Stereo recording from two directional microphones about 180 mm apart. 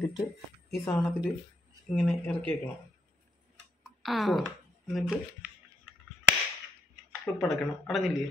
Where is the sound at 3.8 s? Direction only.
Centre (ahead or behind).